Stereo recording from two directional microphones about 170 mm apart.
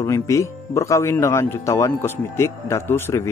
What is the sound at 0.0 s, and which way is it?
Speech, 20° left (ahead or behind).